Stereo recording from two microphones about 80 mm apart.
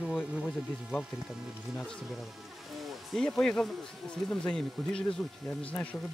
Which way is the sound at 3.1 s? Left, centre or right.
Centre.